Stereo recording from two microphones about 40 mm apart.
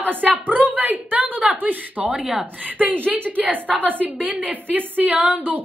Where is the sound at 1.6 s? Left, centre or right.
Right.